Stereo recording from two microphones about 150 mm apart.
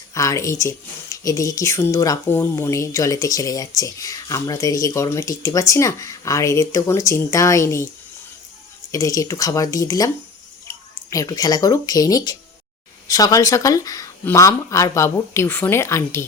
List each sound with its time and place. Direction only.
0.1 s speech: 20° left (ahead or behind)
8.9 s speech: 25° left (ahead or behind)